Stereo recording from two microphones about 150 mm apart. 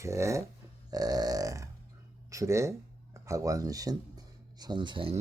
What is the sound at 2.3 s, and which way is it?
Speech, 20° right (ahead or behind).